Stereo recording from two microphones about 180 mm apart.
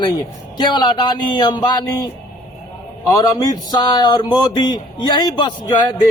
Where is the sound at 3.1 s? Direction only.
20° left (ahead or behind).